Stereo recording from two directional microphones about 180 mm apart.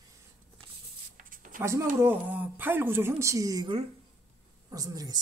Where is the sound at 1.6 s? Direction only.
15° right (ahead or behind).